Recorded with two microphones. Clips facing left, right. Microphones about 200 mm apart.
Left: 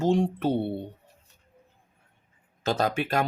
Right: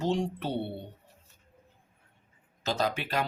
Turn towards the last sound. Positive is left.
turn(degrees=50)  # may be behind; listen again after turning